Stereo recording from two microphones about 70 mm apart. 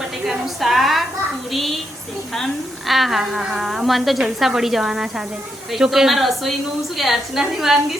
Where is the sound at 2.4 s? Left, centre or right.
Centre.